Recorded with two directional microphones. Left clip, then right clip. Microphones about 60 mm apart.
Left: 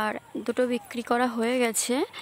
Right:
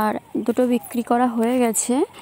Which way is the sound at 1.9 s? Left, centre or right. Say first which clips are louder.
Right 6 dB; centre.